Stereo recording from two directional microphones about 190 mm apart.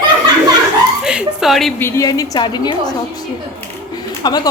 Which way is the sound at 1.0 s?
5° right (ahead or behind).